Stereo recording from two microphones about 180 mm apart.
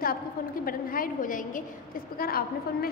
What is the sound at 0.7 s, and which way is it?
A woman's voice, 50° left (ahead or behind).